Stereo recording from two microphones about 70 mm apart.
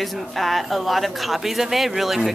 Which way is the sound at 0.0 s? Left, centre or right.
Centre.